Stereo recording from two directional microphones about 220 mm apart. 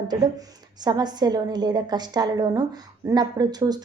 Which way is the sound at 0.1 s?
20° right (ahead or behind).